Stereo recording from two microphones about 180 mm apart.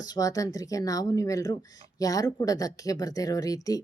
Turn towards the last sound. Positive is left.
turn(degrees=20)  # may be behind; listen again after turning